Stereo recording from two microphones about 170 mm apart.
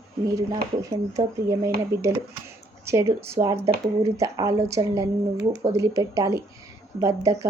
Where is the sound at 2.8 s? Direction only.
15° right (ahead or behind).